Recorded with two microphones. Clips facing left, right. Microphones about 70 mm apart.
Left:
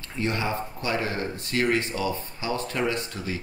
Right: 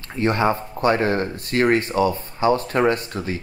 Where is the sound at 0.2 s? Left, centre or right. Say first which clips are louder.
Right 8 dB; right.